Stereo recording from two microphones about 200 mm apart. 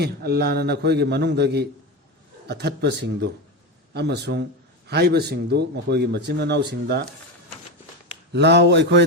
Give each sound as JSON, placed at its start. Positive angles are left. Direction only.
{"t": 0.0, "sound": "speech", "side_deg": -55}
{"t": 8.3, "sound": "speech", "side_deg": -55}